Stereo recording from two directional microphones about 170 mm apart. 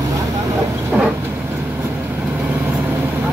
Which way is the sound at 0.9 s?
5° right (ahead or behind).